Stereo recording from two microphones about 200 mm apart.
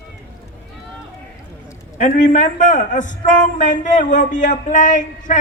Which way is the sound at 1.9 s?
40° left (ahead or behind).